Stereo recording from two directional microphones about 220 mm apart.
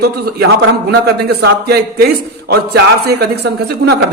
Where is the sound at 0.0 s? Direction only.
45° right (ahead or behind).